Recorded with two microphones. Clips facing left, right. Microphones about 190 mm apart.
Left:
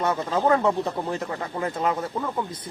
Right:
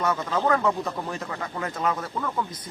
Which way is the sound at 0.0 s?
30° left (ahead or behind).